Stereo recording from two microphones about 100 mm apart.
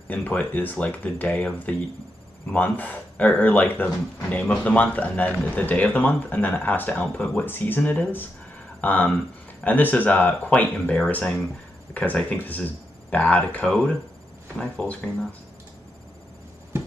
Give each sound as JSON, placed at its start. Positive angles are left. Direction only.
{"t": 0.1, "sound": "speech", "side_deg": 15}